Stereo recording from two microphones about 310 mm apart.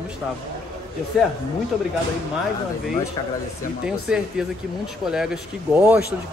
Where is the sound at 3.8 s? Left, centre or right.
Centre.